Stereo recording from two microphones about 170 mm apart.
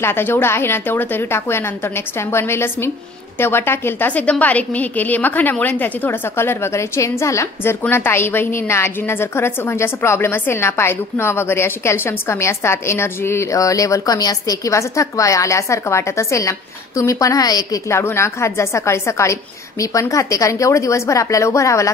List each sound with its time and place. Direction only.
0.0 s a woman's voice: 15° left (ahead or behind)